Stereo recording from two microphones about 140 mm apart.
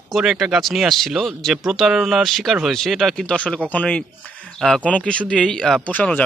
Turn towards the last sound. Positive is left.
turn(degrees=10)  # may be behind; listen again after turning